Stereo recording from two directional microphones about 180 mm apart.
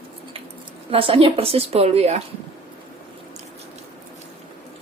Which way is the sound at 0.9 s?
30° right (ahead or behind).